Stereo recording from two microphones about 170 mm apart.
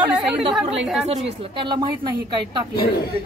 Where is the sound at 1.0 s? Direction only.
35° right (ahead or behind).